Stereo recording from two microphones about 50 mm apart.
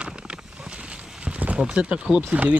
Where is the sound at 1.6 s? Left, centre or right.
Centre.